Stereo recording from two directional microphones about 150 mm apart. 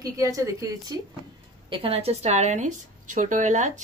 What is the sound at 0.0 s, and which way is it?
Speech, 20° right (ahead or behind).